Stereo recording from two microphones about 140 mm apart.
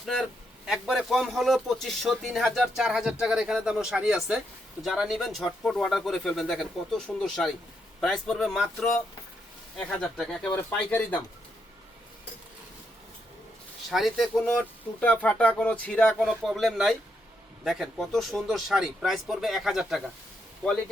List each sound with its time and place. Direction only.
0.0 s a man's voice: centre (ahead or behind)
10.5 s speech: 15° left (ahead or behind)
13.9 s a man's voice: centre (ahead or behind)